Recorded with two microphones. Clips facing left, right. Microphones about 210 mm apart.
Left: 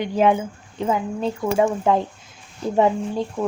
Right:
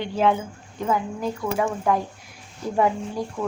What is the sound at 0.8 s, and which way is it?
Speech, 25° left (ahead or behind).